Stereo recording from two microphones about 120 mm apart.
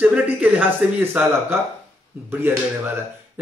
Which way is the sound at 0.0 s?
10° right (ahead or behind).